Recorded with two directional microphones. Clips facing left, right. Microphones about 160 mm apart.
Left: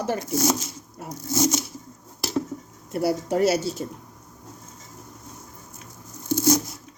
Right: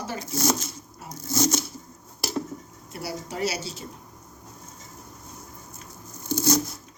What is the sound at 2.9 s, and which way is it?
Speech, 50° left (ahead or behind).